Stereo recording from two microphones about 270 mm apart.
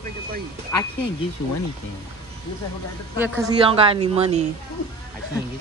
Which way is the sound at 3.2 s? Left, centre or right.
Centre.